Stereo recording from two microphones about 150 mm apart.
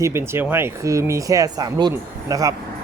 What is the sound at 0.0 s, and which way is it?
Speech, 15° right (ahead or behind).